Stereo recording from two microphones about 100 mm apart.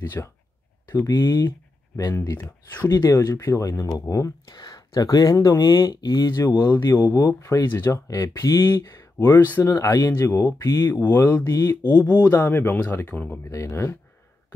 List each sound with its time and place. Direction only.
0.2 s speech: 20° left (ahead or behind)
0.9 s speech: 35° left (ahead or behind)
6.7 s speech: 45° left (ahead or behind)
7.0 s speech: 30° left (ahead or behind)